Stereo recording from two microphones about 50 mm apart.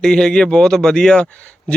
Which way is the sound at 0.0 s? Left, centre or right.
Centre.